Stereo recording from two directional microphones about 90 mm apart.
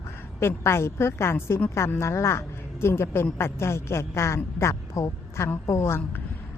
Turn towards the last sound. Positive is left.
turn(degrees=30)  # may be behind; listen again after turning